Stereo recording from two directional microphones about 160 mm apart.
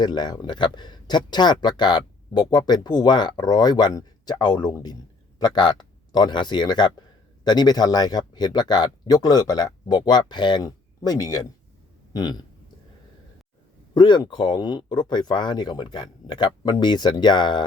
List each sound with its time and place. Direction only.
0.0 s speech: 25° left (ahead or behind)
13.9 s speech: 30° left (ahead or behind)